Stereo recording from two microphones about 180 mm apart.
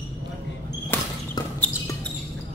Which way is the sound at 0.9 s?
10° left (ahead or behind).